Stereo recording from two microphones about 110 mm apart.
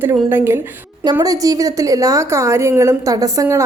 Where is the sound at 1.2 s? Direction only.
35° right (ahead or behind).